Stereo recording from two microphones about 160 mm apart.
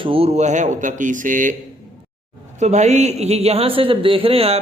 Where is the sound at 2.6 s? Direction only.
45° right (ahead or behind).